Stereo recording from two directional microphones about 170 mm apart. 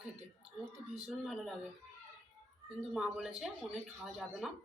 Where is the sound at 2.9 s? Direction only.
Centre (ahead or behind).